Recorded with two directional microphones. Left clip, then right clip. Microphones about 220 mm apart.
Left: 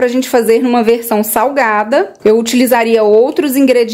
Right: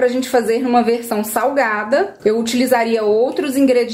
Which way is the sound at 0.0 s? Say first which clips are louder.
Left 4 dB; 45° left (ahead or behind).